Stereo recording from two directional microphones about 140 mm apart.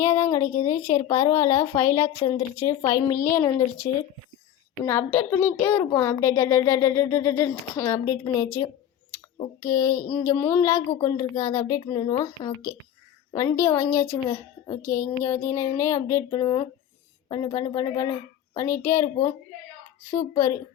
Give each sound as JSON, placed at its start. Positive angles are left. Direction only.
{"t": 0.0, "sound": "a child's voice", "side_deg": 20}